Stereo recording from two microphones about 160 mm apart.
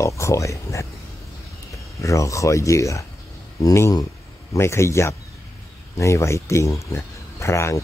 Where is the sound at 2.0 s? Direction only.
20° left (ahead or behind).